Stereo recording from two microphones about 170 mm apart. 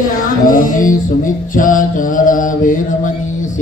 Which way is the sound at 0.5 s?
55° left (ahead or behind).